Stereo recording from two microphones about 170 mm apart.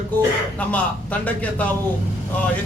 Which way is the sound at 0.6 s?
10° left (ahead or behind).